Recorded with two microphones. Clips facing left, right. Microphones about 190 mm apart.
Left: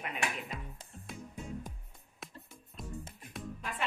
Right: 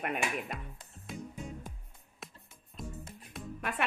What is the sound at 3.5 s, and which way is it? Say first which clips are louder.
Music: right 9 dB; 65° right (ahead or behind).